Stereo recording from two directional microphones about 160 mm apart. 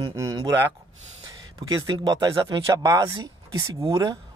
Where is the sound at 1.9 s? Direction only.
25° right (ahead or behind).